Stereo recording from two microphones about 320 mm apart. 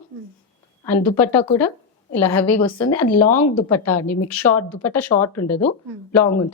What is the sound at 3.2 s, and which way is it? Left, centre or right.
Speech, left.